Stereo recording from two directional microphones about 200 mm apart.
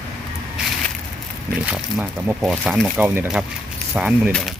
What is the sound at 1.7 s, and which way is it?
Speech, 5° right (ahead or behind).